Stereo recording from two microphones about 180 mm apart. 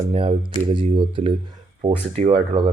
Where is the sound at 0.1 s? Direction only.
30° right (ahead or behind).